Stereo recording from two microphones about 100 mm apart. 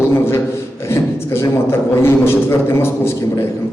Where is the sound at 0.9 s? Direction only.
25° left (ahead or behind).